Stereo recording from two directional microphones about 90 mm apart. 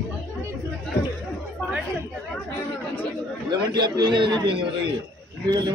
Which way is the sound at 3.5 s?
55° right (ahead or behind).